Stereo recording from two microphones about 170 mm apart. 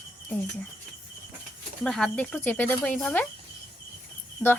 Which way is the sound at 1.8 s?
5° left (ahead or behind).